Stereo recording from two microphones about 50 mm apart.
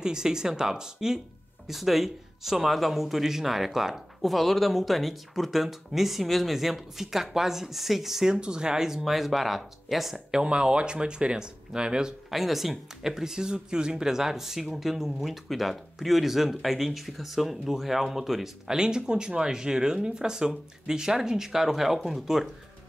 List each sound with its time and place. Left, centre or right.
0.0 s speech: centre
10.4 s speech: centre
12.3 s speech: centre